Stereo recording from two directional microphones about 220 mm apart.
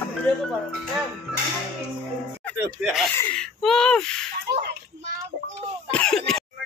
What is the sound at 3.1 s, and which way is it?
Speech, 5° left (ahead or behind).